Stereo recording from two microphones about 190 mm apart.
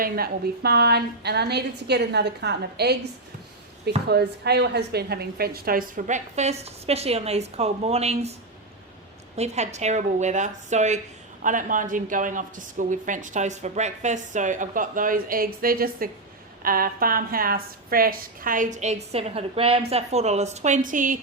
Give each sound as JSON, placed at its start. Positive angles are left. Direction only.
{"t": 0.0, "sound": "a woman's voice", "side_deg": -55}
{"t": 9.3, "sound": "a woman's voice", "side_deg": -35}